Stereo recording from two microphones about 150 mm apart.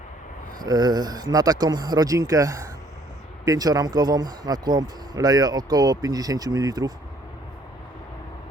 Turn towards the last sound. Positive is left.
turn(degrees=-25)  # may be behind; listen again after turning